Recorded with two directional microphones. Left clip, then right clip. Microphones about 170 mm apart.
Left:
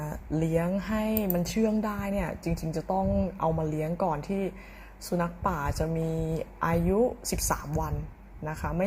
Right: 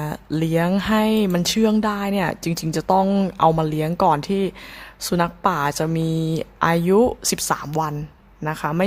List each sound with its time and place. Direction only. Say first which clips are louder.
0.0 s a sound: right 7 dB; 30° right (ahead or behind)
0.7 s speech: right 11 dB; 35° right (ahead or behind)
7.3 s a woman's voice: right 8 dB; 25° right (ahead or behind)